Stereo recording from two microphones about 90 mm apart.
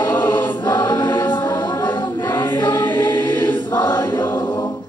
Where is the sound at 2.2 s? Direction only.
35° left (ahead or behind).